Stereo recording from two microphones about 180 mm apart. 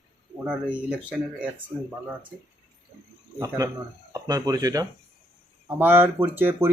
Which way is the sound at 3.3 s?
20° right (ahead or behind).